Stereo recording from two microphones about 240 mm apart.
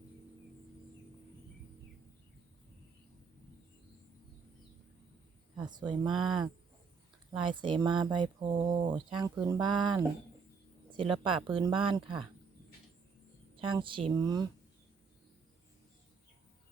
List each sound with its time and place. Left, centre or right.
5.6 s speech: centre
7.3 s speech: centre
13.6 s speech: right